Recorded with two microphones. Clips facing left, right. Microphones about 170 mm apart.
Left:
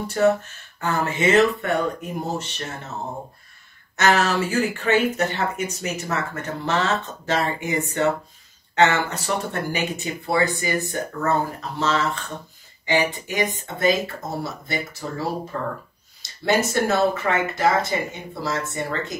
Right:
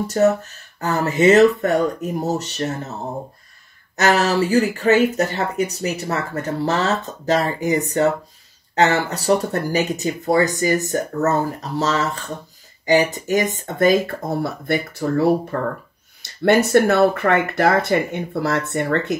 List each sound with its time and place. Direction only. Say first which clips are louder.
0.0 s speech: right 3 dB; 40° right (ahead or behind)
3.9 s speech: right 3 dB; 35° right (ahead or behind); by 19.1 s 65° right (ahead or behind)